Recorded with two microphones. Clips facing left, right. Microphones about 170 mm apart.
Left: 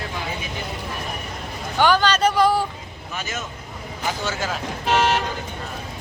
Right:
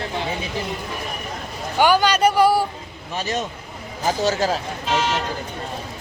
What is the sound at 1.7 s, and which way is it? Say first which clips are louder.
Speech: right 1 dB; 10° right (ahead or behind).